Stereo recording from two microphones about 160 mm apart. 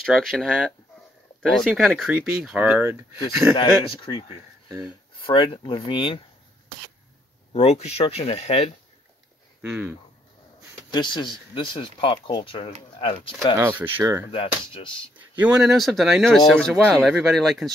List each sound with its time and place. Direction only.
0.0 s speech: centre (ahead or behind)
3.5 s speech: 30° left (ahead or behind)
7.5 s speech: 40° left (ahead or behind)
9.6 s speech: 10° right (ahead or behind)
10.9 s speech: 25° left (ahead or behind)
13.6 s speech: 15° right (ahead or behind)
14.3 s speech: 35° left (ahead or behind)
15.1 s speech: 5° right (ahead or behind)